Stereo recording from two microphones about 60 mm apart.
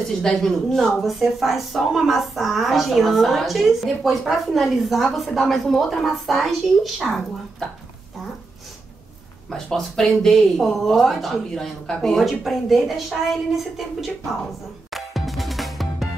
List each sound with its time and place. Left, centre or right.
0.2 s a woman's voice: centre
9.5 s a woman's voice: centre
14.4 s music: centre